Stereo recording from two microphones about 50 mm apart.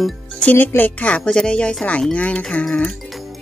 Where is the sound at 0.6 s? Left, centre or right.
Left.